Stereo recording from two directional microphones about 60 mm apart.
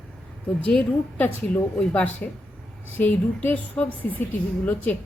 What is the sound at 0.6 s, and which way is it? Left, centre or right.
Speech, centre.